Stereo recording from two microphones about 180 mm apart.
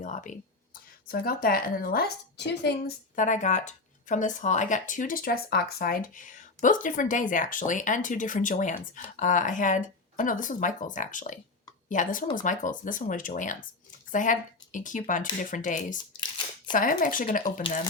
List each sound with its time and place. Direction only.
0.0 s speech: 45° left (ahead or behind)
1.0 s a woman's voice: 55° left (ahead or behind)
3.2 s speech: 45° left (ahead or behind)